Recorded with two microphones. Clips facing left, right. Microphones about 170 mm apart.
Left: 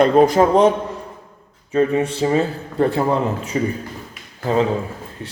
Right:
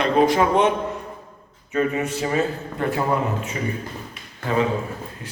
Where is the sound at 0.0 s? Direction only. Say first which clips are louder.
Left 5 dB; 40° left (ahead or behind).